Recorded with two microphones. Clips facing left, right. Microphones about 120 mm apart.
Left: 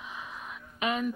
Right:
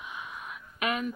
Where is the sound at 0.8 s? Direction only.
30° left (ahead or behind).